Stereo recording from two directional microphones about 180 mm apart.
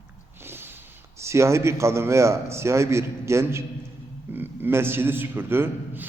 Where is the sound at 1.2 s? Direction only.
15° right (ahead or behind).